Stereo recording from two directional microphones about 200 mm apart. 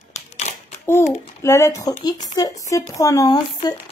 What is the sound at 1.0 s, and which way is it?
Speech, 35° left (ahead or behind).